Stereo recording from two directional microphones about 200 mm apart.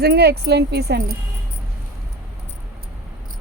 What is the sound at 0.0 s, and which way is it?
Speech, 55° right (ahead or behind).